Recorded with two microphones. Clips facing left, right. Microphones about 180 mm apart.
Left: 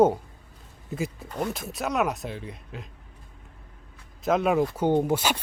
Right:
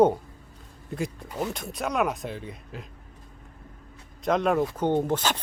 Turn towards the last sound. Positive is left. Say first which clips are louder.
# left 2 dB
turn(degrees=10)  # may be behind; listen again after turning